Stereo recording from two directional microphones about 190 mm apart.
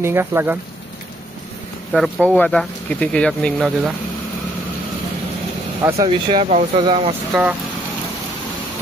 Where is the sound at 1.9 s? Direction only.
5° left (ahead or behind).